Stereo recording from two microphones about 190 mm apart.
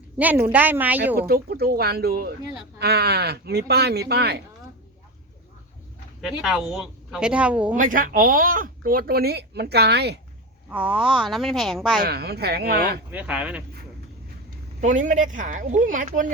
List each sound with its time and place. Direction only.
0.2 s a woman's voice: 10° right (ahead or behind)
1.3 s speech: 55° right (ahead or behind)
6.2 s a woman's voice: 5° right (ahead or behind)
7.8 s speech: 45° right (ahead or behind)
10.7 s a woman's voice: 5° right (ahead or behind)
12.0 s speech: 55° right (ahead or behind)
13.1 s a woman's voice: 5° right (ahead or behind)
14.8 s speech: 40° right (ahead or behind)